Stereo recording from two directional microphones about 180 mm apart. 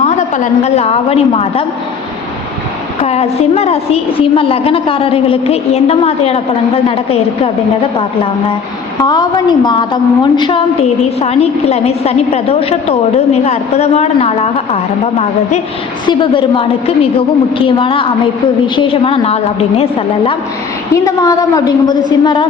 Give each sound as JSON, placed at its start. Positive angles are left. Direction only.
{"t": 0.0, "sound": "a woman's voice", "side_deg": 40}
{"t": 3.0, "sound": "a woman's voice", "side_deg": 35}
{"t": 9.0, "sound": "a woman's voice", "side_deg": 20}
{"t": 16.0, "sound": "a woman's voice", "side_deg": 25}
{"t": 20.9, "sound": "a woman's voice", "side_deg": 20}